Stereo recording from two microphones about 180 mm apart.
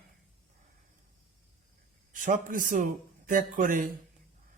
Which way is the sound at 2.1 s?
45° right (ahead or behind).